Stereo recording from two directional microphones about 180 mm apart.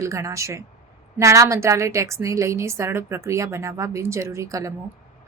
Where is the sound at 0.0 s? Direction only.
15° right (ahead or behind).